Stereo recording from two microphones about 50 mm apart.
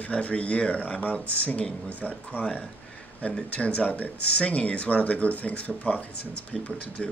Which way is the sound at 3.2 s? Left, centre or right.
Left.